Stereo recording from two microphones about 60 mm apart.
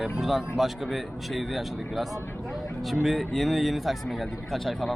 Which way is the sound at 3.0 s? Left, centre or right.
Centre.